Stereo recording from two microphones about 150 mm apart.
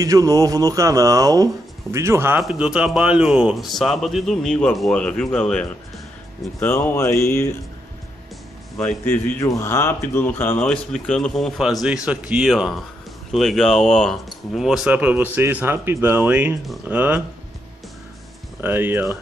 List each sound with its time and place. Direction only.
0.0 s speech: 25° right (ahead or behind); by 7.5 s 20° left (ahead or behind)
8.7 s a man's voice: 10° left (ahead or behind); by 17.2 s 10° right (ahead or behind)
18.6 s speech: 15° right (ahead or behind)